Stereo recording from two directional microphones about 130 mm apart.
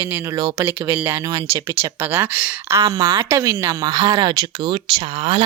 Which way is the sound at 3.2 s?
25° right (ahead or behind).